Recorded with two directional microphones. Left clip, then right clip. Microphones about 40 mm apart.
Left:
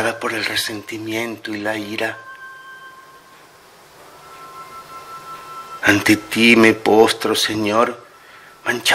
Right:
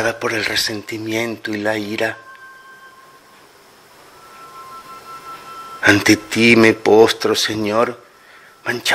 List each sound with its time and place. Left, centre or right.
0.0 s a man's voice: right
5.8 s a sound: centre
6.2 s a man's voice: right
6.5 s a man's voice: centre